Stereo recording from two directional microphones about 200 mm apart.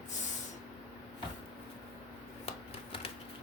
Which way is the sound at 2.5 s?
30° left (ahead or behind).